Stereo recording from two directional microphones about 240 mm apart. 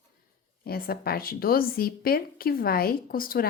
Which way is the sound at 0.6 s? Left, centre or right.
Left.